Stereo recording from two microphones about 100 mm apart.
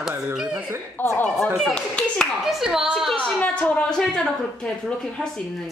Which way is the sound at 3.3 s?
15° left (ahead or behind).